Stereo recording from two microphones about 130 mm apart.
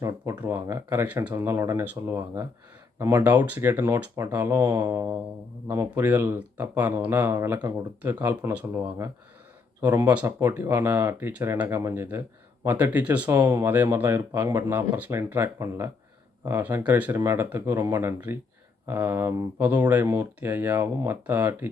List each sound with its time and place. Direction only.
0.0 s speech: 20° right (ahead or behind)
9.8 s speech: 10° right (ahead or behind)